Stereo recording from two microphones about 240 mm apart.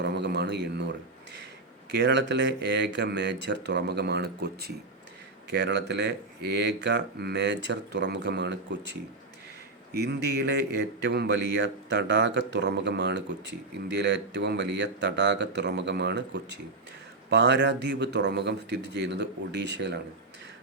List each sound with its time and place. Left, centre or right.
0.0 s a sound: right
2.0 s speech: right
9.9 s speech: right